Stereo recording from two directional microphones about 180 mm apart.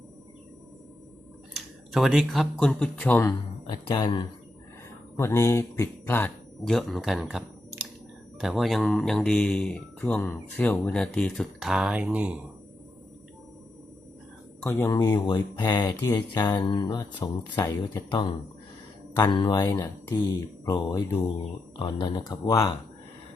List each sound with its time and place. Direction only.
1.5 s speech: centre (ahead or behind); by 4.2 s 25° left (ahead or behind)
5.1 s a man's voice: 15° left (ahead or behind); by 12.4 s 5° right (ahead or behind)
14.6 s speech: 15° left (ahead or behind)